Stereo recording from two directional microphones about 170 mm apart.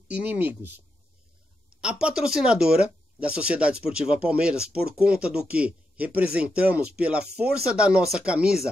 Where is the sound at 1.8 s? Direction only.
5° right (ahead or behind).